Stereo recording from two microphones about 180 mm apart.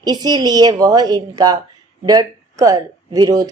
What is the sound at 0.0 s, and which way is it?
Speech, 20° right (ahead or behind).